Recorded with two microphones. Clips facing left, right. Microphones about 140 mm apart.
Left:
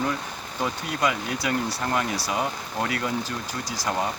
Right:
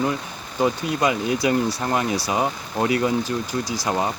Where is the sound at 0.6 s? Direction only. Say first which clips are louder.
Right 5 dB; 25° right (ahead or behind).